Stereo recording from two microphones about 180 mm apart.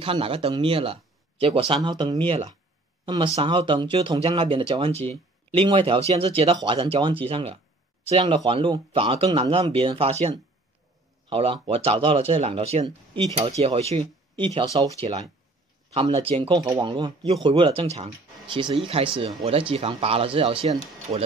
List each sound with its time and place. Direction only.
0.0 s speech: 30° right (ahead or behind)